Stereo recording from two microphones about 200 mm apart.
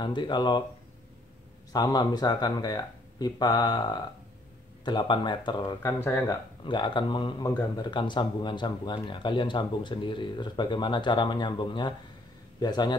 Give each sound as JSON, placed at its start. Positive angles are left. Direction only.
{"t": 0.0, "sound": "speech", "side_deg": 20}
{"t": 1.7, "sound": "speech", "side_deg": 20}